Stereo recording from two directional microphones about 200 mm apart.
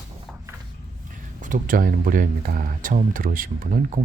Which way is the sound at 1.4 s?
45° right (ahead or behind).